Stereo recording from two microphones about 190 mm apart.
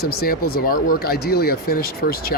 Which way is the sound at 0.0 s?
55° left (ahead or behind).